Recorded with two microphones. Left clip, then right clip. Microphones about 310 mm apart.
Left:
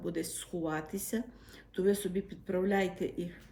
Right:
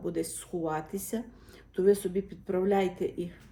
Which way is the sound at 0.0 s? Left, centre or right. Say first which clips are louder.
Right 4 dB; centre.